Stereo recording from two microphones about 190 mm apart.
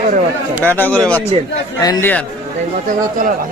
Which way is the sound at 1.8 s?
20° left (ahead or behind).